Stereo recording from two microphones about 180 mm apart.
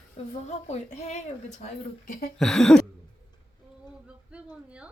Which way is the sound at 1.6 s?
50° left (ahead or behind).